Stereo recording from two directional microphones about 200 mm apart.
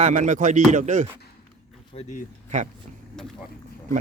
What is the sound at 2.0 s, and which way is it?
Speech, 35° left (ahead or behind).